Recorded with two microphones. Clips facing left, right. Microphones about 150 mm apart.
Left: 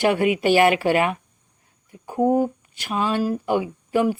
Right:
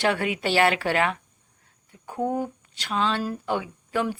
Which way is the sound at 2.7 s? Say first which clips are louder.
Left 2 dB; 10° left (ahead or behind).